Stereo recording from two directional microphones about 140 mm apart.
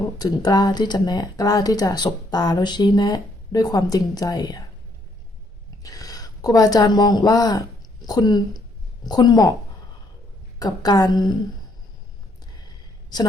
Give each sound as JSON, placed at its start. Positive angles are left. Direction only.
{"t": 0.2, "sound": "speech", "side_deg": 25}
{"t": 5.8, "sound": "speech", "side_deg": 25}
{"t": 10.6, "sound": "speech", "side_deg": 30}